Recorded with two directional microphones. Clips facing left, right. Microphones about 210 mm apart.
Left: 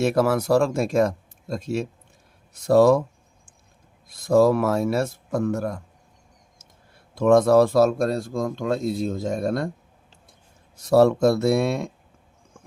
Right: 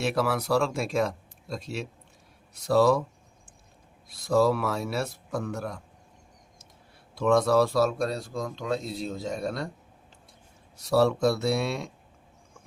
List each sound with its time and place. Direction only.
0.0 s speech: 45° left (ahead or behind)
4.1 s speech: 50° left (ahead or behind)
7.2 s speech: 50° left (ahead or behind)
10.8 s speech: 50° left (ahead or behind)